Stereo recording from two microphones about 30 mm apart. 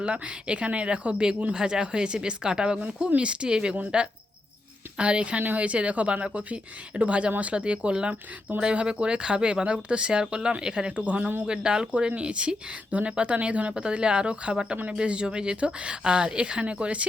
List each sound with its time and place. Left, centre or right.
0.0 s speech: right
1.5 s speech: right
4.9 s speech: right
10.9 s speech: right
11.4 s speech: right
11.9 s speech: right